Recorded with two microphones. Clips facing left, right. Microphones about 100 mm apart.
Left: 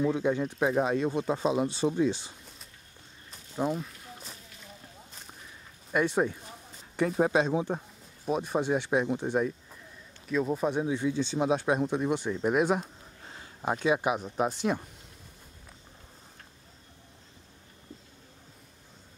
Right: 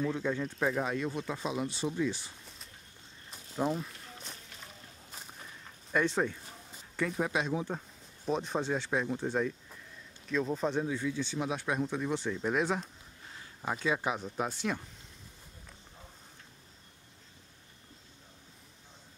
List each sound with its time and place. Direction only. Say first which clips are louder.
0.0 s speech: left 5 dB; 15° left (ahead or behind)
3.3 s walk: left 2 dB; centre (ahead or behind)
5.9 s speech: left 3 dB; 10° left (ahead or behind)
7.1 s speech: left 8 dB; 40° left (ahead or behind)
7.5 s speech: left 5 dB; 20° left (ahead or behind)
8.3 s speech: left 4 dB; 10° left (ahead or behind)
11.1 s speech: left 7 dB; 25° left (ahead or behind)
13.3 s a sound: left 5 dB; 30° left (ahead or behind)
13.8 s speech: left 5 dB; 15° left (ahead or behind)